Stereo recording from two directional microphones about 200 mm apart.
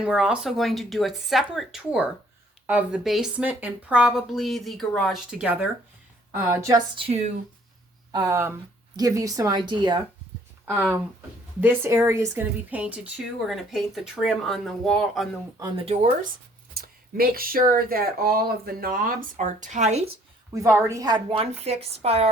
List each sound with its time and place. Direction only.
0.0 s a woman's voice: 5° right (ahead or behind); by 7.3 s 35° right (ahead or behind)
8.1 s a woman's voice: 15° right (ahead or behind)
10.7 s a woman's voice: 10° right (ahead or behind)
15.5 s speech: 20° right (ahead or behind)
15.9 s speech: 35° right (ahead or behind)
16.7 s speech: 50° right (ahead or behind)
20.5 s a woman's voice: 15° right (ahead or behind); by 22.3 s 30° right (ahead or behind)